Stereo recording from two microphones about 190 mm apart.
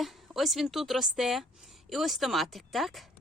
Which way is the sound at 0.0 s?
Centre (ahead or behind).